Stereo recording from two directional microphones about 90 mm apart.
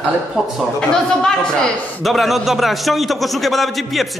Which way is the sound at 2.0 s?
Centre (ahead or behind).